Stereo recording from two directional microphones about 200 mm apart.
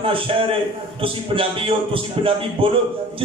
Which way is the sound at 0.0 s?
25° right (ahead or behind).